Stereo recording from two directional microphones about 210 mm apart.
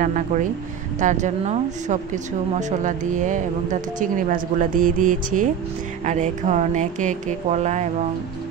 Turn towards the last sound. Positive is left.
turn(degrees=-35)  # may be behind; listen again after turning